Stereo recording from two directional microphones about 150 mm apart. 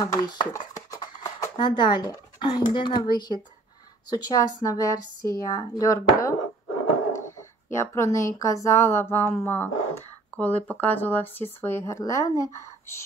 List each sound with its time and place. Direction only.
0.0 s speech: 25° left (ahead or behind)